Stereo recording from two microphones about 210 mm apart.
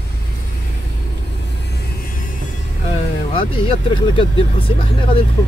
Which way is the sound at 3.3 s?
25° left (ahead or behind).